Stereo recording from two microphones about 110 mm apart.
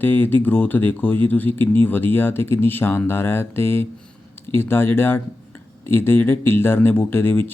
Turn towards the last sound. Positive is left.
turn(degrees=20)  # may be behind; listen again after turning